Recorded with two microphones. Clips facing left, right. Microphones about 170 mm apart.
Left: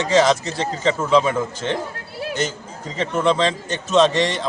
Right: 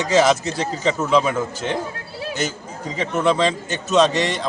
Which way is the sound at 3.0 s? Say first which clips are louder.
Even; 5° right (ahead or behind).